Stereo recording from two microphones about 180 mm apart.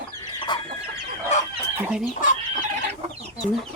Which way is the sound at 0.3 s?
25° left (ahead or behind).